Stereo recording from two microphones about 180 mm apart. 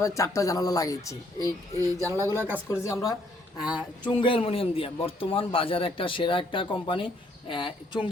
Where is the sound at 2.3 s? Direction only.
10° right (ahead or behind).